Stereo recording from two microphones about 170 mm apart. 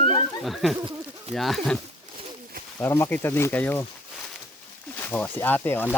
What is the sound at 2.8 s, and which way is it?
Speech, 15° left (ahead or behind).